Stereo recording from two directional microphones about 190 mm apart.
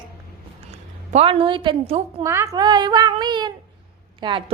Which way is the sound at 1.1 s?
30° right (ahead or behind).